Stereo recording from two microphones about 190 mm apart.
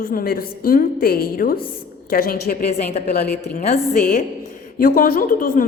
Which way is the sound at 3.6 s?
40° left (ahead or behind).